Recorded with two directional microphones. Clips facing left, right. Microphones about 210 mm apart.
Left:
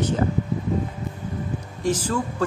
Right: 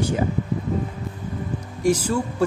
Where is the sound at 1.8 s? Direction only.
10° right (ahead or behind).